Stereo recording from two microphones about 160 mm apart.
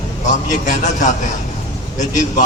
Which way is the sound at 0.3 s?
50° left (ahead or behind).